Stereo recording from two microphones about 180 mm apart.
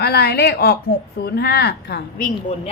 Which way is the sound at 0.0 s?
65° left (ahead or behind).